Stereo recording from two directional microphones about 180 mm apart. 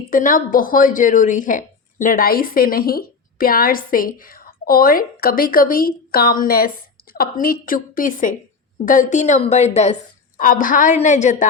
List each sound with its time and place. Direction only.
0.1 s a woman's voice: 50° left (ahead or behind)